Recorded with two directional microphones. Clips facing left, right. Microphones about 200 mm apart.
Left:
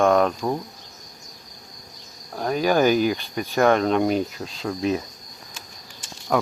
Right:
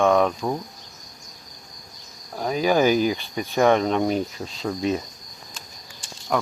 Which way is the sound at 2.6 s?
10° right (ahead or behind).